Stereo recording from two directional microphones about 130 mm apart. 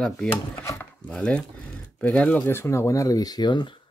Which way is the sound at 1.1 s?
10° left (ahead or behind).